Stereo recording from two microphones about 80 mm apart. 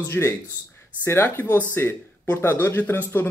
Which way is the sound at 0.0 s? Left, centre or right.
Left.